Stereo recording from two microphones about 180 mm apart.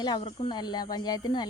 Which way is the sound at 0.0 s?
25° left (ahead or behind).